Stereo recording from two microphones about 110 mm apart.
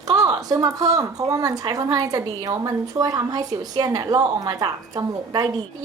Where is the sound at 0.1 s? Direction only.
35° right (ahead or behind).